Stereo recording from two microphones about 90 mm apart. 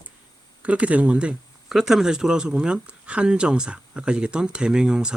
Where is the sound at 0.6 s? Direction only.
15° right (ahead or behind).